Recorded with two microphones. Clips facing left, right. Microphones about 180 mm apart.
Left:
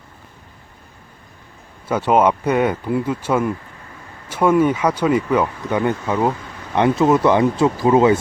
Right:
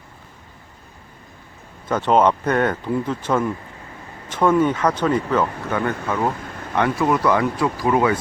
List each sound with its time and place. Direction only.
1.9 s speech: 10° left (ahead or behind); by 8.2 s 25° left (ahead or behind)